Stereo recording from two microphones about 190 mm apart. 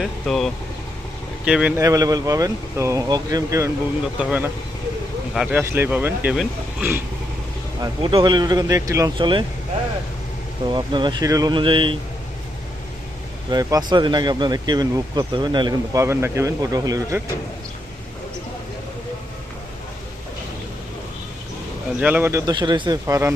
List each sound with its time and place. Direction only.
0.0 s speech: centre (ahead or behind)
5.5 s speech: 10° right (ahead or behind)
7.8 s speech: 25° right (ahead or behind)
10.7 s speech: 25° right (ahead or behind)
13.5 s speech: 20° right (ahead or behind)
22.0 s speech: 10° right (ahead or behind)